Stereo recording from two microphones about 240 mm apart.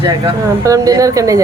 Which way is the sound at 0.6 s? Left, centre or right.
Centre.